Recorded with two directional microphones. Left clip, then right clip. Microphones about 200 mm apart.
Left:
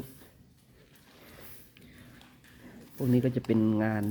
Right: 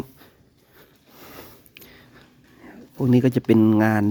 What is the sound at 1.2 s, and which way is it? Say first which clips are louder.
Mechanisms: right 11 dB; 55° right (ahead or behind).